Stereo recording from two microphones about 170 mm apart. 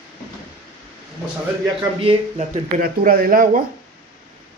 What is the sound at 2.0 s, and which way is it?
Speech, 35° right (ahead or behind).